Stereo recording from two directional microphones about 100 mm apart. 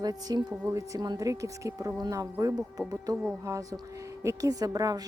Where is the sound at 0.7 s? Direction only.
35° right (ahead or behind).